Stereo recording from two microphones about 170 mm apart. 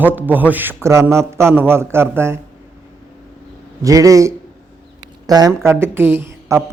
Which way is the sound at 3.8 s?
20° right (ahead or behind).